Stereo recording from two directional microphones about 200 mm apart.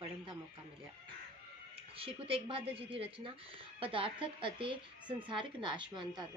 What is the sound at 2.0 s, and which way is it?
A woman's voice, 25° right (ahead or behind).